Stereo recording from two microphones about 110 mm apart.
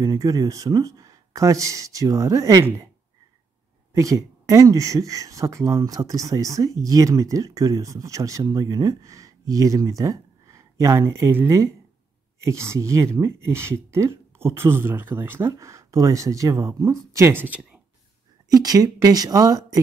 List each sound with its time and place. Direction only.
0.0 s speech: 35° right (ahead or behind)
3.9 s speech: 30° right (ahead or behind)
18.5 s speech: 35° right (ahead or behind)